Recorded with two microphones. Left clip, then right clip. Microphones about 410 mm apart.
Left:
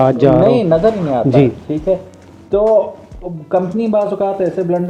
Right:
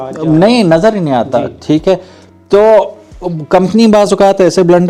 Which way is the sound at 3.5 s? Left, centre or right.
Right.